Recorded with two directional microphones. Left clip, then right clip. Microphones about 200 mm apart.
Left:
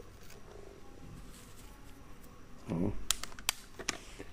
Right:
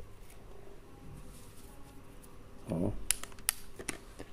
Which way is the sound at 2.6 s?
5° right (ahead or behind).